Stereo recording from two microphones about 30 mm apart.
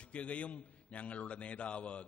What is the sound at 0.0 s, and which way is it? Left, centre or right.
A man's voice, left.